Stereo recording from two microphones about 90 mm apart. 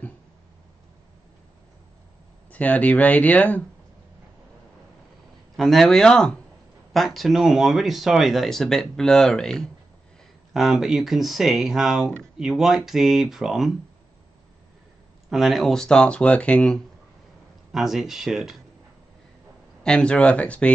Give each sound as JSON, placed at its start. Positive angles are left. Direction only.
{"t": 2.5, "sound": "speech", "side_deg": 15}
{"t": 5.6, "sound": "speech", "side_deg": 0}
{"t": 15.2, "sound": "speech", "side_deg": 0}
{"t": 17.7, "sound": "speech", "side_deg": -5}
{"t": 19.8, "sound": "speech", "side_deg": 10}